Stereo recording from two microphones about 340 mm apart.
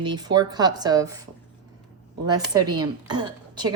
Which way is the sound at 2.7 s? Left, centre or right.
Centre.